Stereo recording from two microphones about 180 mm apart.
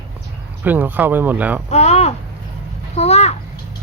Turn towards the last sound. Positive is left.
turn(degrees=35)  # may be behind; listen again after turning